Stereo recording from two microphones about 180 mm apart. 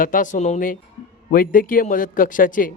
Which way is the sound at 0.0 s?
50° left (ahead or behind).